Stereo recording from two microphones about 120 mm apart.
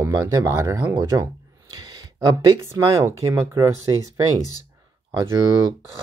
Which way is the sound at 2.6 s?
25° right (ahead or behind).